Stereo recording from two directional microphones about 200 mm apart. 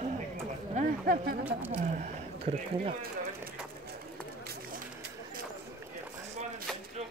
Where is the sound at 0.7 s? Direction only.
45° right (ahead or behind).